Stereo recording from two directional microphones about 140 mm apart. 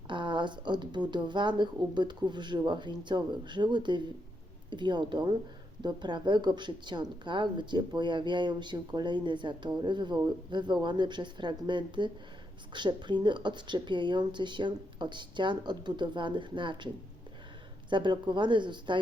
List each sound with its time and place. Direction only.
0.1 s speech: 35° right (ahead or behind)